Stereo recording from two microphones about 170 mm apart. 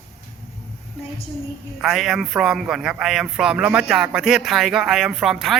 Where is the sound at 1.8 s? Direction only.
Centre (ahead or behind).